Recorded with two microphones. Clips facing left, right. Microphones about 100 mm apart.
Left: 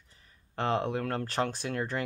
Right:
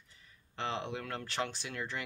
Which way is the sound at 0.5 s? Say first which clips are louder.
Left 8 dB; 45° left (ahead or behind).